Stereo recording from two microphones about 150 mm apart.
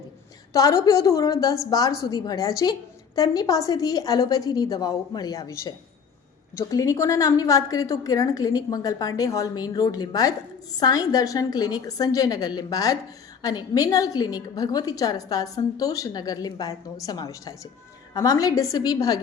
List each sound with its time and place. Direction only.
0.5 s a woman's voice: 20° left (ahead or behind)